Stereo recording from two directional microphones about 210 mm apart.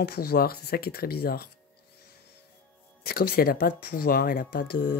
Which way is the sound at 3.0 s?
45° left (ahead or behind).